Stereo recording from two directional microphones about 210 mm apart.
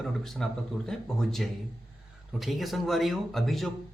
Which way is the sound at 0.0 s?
Centre (ahead or behind).